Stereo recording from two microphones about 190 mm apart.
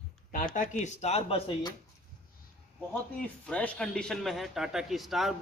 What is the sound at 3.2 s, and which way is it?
A man's voice, 5° left (ahead or behind).